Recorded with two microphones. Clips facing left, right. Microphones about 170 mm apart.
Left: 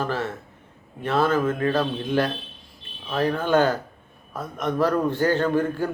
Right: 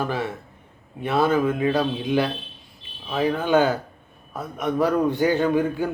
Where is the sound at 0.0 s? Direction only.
10° right (ahead or behind).